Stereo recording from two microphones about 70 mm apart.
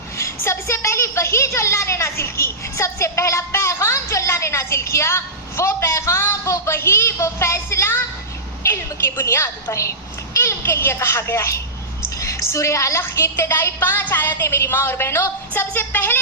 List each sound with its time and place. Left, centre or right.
0.2 s a woman's voice: left